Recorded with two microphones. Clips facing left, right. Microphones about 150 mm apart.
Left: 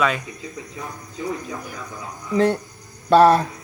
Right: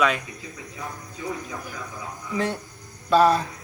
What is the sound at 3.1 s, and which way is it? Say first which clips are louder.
Hum: left 5 dB; 65° left (ahead or behind).